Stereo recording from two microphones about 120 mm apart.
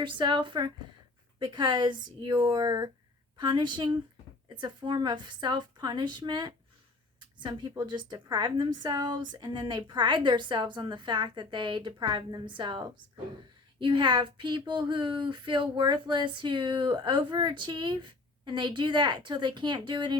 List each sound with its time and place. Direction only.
0.0 s speech: 40° right (ahead or behind)